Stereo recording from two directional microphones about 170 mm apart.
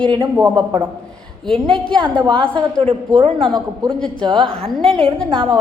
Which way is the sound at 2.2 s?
30° right (ahead or behind).